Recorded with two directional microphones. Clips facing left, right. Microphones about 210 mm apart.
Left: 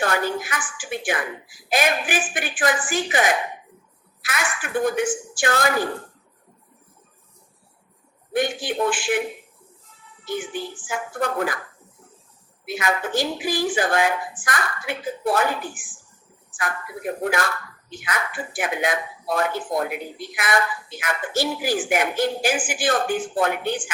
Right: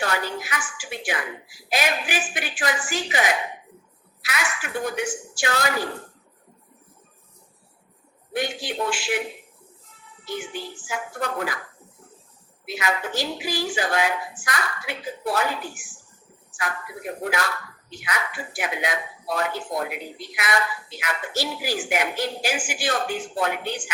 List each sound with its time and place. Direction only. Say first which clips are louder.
0.0 s a woman's voice: left 4 dB; 50° left (ahead or behind)
8.3 s a woman's voice: left 4 dB; 50° left (ahead or behind)
10.2 s a woman's voice: left 3 dB; 50° left (ahead or behind)
12.6 s a woman's voice: left 2 dB; 50° left (ahead or behind)
16.5 s a sound: left 1 dB; 50° left (ahead or behind)
17.2 s a woman's voice: left 2 dB; 50° left (ahead or behind)